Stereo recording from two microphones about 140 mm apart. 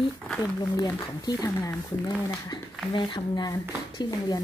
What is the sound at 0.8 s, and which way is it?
Speech, 25° left (ahead or behind).